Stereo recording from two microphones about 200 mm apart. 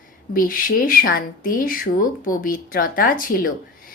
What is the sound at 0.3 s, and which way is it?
Speech, 45° left (ahead or behind).